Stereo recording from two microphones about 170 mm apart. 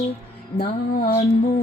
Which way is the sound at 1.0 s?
55° left (ahead or behind).